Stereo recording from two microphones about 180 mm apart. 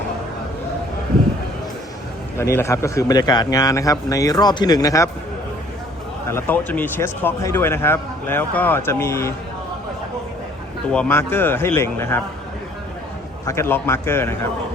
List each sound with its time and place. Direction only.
2.6 s a man's voice: 15° left (ahead or behind)
6.2 s speech: 10° left (ahead or behind)
10.9 s speech: 10° left (ahead or behind)
13.5 s speech: 15° left (ahead or behind)